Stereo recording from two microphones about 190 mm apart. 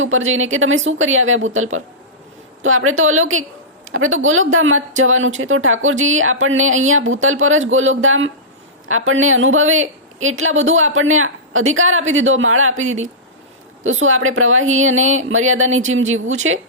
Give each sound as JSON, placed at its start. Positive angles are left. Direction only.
{"t": 0.0, "sound": "a woman's voice", "side_deg": -90}